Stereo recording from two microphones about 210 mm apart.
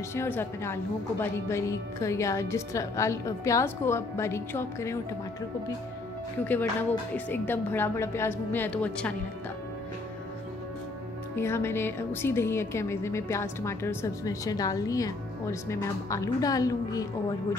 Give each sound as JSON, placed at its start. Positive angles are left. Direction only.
{"t": 0.1, "sound": "speech", "side_deg": 10}
{"t": 6.4, "sound": "speech", "side_deg": 10}
{"t": 11.3, "sound": "speech", "side_deg": 10}